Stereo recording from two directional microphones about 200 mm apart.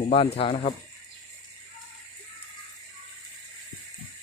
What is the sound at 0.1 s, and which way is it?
Speech, 30° left (ahead or behind).